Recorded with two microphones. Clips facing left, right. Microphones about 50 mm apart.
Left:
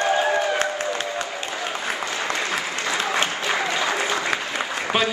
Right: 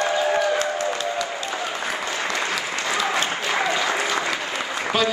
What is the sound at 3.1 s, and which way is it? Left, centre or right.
Applause, left.